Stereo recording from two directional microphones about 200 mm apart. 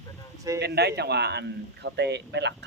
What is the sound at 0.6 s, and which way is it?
A man's voice, 55° right (ahead or behind).